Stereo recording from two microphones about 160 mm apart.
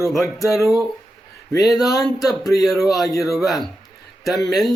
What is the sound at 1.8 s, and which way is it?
Speech, 20° left (ahead or behind).